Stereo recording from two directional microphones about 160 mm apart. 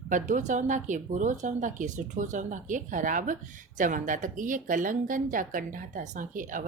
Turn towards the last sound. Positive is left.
turn(degrees=-55)  # may be behind; listen again after turning